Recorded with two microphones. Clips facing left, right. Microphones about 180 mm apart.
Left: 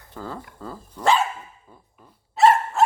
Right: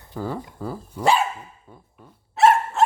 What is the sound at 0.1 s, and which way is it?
Speech, 15° right (ahead or behind).